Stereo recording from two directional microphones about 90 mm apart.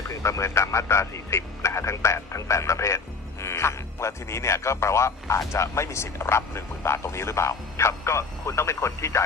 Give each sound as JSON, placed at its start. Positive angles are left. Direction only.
{"t": 0.1, "sound": "speech", "side_deg": 35}